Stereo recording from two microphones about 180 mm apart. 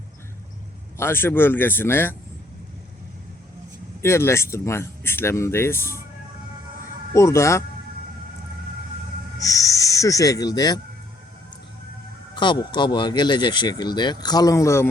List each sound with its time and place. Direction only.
0.9 s speech: 10° left (ahead or behind)
4.0 s speech: 15° left (ahead or behind)
7.1 s speech: 15° left (ahead or behind)
9.4 s speech: 20° left (ahead or behind)
12.3 s speech: 25° left (ahead or behind)